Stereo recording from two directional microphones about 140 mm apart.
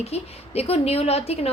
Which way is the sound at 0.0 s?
45° left (ahead or behind).